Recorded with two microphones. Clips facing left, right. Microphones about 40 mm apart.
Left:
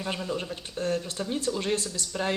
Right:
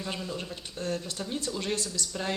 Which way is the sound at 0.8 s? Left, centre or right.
Left.